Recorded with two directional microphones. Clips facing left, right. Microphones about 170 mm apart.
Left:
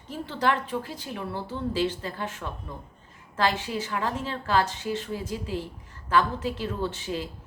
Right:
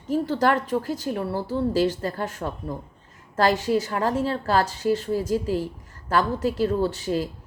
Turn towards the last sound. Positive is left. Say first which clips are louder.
# right 7 dB
turn(degrees=-40)  # may be behind; listen again after turning